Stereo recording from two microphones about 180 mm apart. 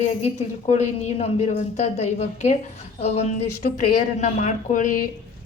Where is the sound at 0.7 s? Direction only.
40° left (ahead or behind).